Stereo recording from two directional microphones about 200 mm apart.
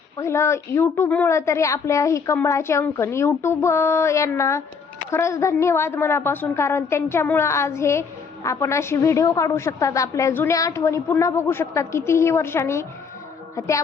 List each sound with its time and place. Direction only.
0.2 s a woman's voice: 15° left (ahead or behind)